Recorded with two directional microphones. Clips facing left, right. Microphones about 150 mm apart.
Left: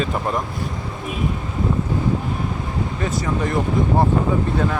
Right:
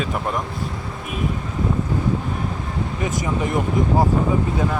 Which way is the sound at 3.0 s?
15° right (ahead or behind).